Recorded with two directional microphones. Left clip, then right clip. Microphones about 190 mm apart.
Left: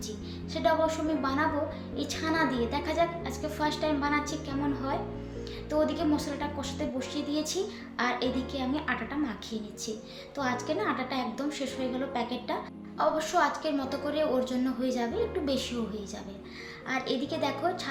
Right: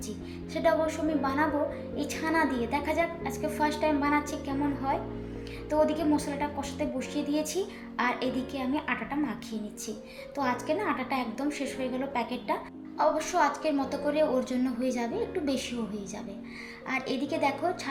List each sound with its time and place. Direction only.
0.5 s a woman's voice: 15° right (ahead or behind)
5.8 s a woman's voice: 15° right (ahead or behind)
10.3 s a woman's voice: 15° right (ahead or behind)
16.9 s a woman's voice: 15° right (ahead or behind)